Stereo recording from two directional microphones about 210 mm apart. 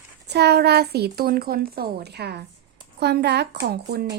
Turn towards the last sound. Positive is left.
turn(degrees=-50)  # may be behind; listen again after turning